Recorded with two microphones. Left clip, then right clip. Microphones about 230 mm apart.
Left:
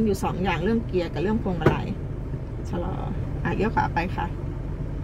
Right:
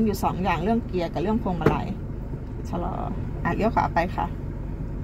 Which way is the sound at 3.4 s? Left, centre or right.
Right.